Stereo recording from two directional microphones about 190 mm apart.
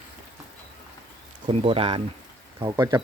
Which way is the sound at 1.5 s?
30° right (ahead or behind).